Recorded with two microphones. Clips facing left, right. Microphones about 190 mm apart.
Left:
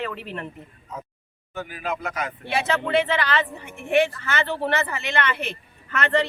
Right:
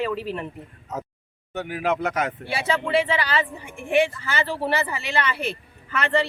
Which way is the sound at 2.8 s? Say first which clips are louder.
Right 1 dB; 10° right (ahead or behind).